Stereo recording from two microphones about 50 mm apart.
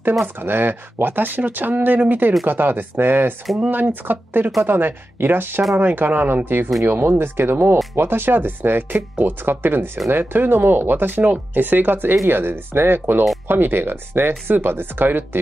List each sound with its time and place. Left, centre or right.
0.2 s speech: right